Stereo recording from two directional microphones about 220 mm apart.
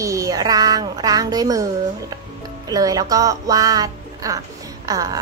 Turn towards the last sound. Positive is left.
turn(degrees=-15)  # may be behind; listen again after turning